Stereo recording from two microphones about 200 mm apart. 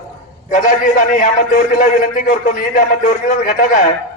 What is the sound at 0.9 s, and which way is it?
A man's voice, 40° left (ahead or behind).